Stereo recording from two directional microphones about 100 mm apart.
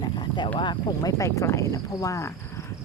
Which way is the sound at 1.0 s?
35° left (ahead or behind).